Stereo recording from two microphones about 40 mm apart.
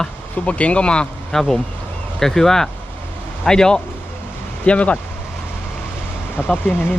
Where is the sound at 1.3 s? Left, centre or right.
Centre.